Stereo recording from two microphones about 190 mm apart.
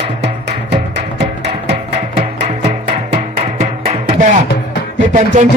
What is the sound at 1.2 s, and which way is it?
Music, 60° right (ahead or behind).